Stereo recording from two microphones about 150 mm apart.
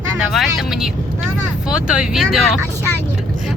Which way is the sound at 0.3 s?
Centre (ahead or behind).